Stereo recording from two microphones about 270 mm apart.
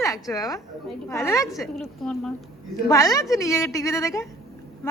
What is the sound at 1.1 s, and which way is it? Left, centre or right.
Speech, centre.